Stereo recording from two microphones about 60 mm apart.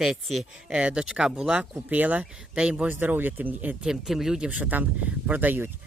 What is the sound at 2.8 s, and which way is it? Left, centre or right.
Speech, right.